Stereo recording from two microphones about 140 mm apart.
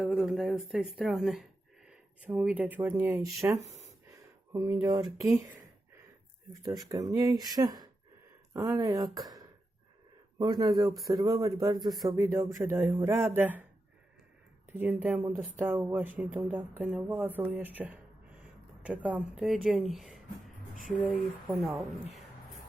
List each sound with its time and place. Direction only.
0.0 s speech: 5° right (ahead or behind)
4.1 s a sound: 20° right (ahead or behind)
5.1 s speech: 20° right (ahead or behind)
6.5 s speech: 25° right (ahead or behind)
10.3 s speech: 30° right (ahead or behind)
14.7 s speech: 15° right (ahead or behind)